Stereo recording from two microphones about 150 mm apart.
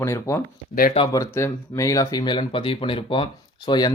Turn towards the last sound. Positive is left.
turn(degrees=30)  # may be behind; listen again after turning